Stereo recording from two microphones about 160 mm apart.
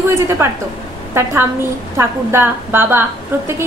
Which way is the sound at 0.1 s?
15° right (ahead or behind).